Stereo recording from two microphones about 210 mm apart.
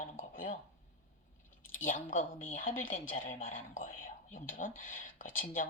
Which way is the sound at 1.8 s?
40° left (ahead or behind).